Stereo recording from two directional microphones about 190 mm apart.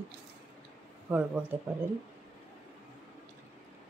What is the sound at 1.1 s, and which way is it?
Speech, 10° right (ahead or behind).